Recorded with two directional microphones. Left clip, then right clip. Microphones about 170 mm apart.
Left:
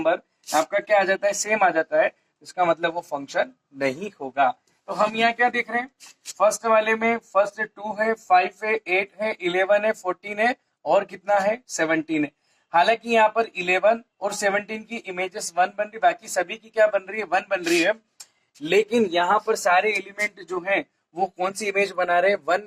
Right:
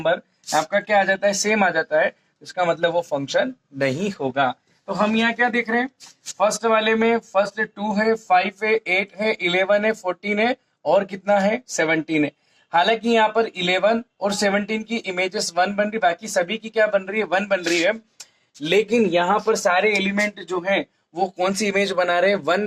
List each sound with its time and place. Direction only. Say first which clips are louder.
0.0 s speech: right 1 dB; 25° right (ahead or behind)
19.5 s speech: right 2 dB; 25° right (ahead or behind)